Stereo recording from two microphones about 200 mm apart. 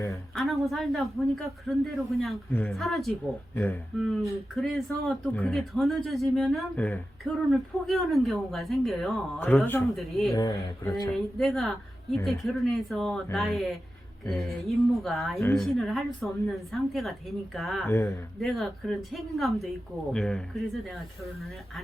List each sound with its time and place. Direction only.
0.3 s speech: centre (ahead or behind)
10.3 s speech: 15° left (ahead or behind)
11.1 s speech: centre (ahead or behind)
17.8 s speech: 10° left (ahead or behind)
18.3 s speech: centre (ahead or behind)